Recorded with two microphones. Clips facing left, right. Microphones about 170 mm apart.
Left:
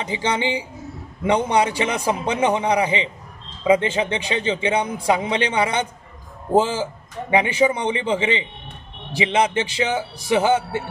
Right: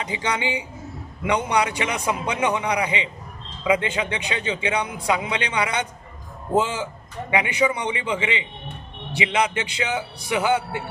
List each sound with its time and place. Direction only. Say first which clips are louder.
0.0 s a man's voice: left 3 dB; 30° left (ahead or behind)